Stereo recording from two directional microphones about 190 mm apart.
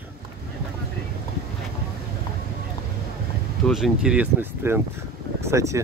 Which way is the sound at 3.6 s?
Centre (ahead or behind).